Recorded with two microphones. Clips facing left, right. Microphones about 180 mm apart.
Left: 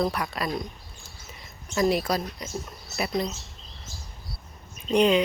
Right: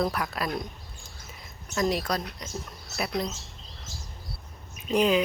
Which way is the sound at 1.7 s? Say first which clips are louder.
Left 3 dB; 5° left (ahead or behind).